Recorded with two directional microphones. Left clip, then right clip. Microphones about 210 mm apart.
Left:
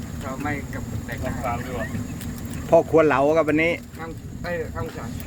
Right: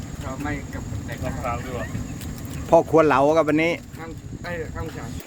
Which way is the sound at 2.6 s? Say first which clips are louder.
Even; 25° right (ahead or behind).